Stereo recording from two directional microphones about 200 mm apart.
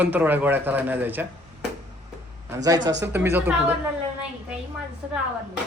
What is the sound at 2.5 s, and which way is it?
A man's voice, 15° right (ahead or behind).